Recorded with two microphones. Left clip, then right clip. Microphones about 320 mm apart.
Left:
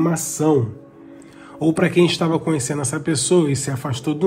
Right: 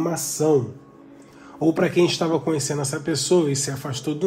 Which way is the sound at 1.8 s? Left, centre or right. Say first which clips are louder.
Left 4 dB; left.